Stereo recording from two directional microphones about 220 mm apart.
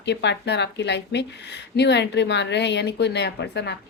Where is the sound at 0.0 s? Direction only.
50° left (ahead or behind).